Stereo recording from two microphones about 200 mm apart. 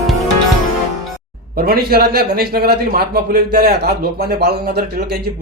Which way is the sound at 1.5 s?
50° right (ahead or behind).